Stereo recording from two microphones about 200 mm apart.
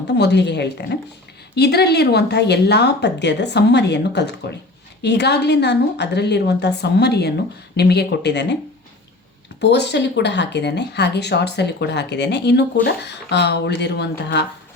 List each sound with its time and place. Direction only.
0.2 s speech: 60° left (ahead or behind)
9.6 s speech: 60° left (ahead or behind)